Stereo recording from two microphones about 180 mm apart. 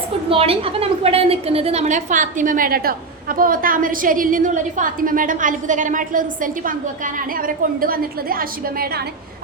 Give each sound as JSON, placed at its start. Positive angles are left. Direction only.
{"t": 0.3, "sound": "a woman's voice", "side_deg": -30}